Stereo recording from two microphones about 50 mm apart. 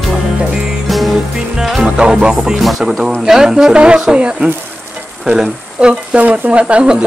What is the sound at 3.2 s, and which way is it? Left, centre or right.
Speech, centre.